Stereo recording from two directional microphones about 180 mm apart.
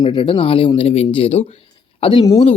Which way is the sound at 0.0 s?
30° left (ahead or behind).